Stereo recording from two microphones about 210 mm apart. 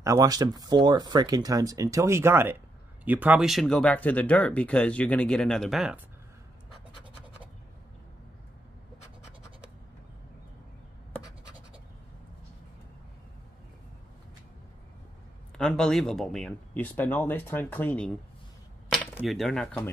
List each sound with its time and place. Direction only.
0.0 s speech: 15° right (ahead or behind)
15.5 s speech: 5° left (ahead or behind)
19.2 s speech: centre (ahead or behind)